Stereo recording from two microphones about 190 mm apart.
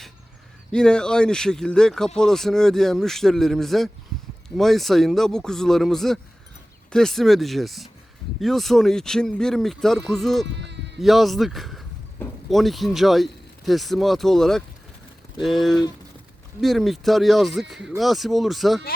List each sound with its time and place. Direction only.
0.7 s speech: 5° left (ahead or behind)
10.4 s speech: 65° right (ahead or behind)
11.0 s a man's voice: centre (ahead or behind)